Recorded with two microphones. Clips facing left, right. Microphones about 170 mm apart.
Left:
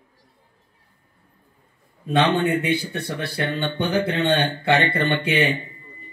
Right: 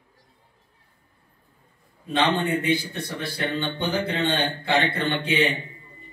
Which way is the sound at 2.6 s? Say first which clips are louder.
Left 1 dB; 65° left (ahead or behind).